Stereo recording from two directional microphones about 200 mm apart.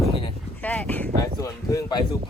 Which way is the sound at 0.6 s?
5° left (ahead or behind).